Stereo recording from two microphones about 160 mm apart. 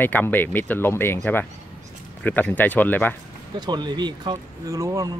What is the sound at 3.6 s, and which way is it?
Speech, 25° right (ahead or behind).